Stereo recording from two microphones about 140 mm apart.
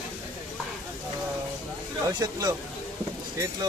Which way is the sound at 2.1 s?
25° right (ahead or behind).